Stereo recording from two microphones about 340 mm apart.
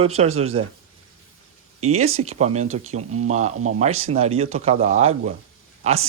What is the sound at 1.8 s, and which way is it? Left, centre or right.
Speech, centre.